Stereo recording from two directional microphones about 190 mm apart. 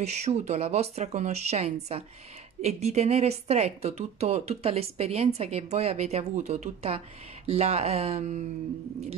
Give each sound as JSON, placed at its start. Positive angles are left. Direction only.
{"t": 0.0, "sound": "a woman's voice", "side_deg": -35}